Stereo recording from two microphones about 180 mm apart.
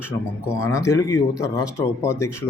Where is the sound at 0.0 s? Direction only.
15° left (ahead or behind).